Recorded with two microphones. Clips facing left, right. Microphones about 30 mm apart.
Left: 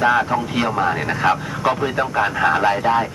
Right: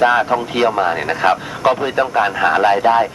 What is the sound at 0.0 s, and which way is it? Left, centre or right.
Speech, centre.